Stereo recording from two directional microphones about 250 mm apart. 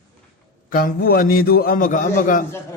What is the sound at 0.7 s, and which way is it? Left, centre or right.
A man's voice, left.